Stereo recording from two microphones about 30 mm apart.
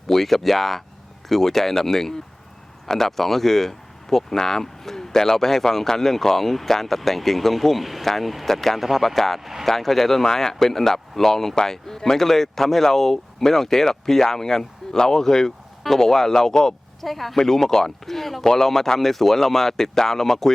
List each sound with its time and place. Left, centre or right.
0.1 s speech: centre
9.4 s speech: centre
9.6 s speech: centre
17.0 s speech: centre
17.3 s speech: centre